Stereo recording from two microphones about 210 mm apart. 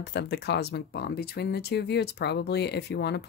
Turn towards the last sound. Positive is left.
turn(degrees=55)  # may be behind; listen again after turning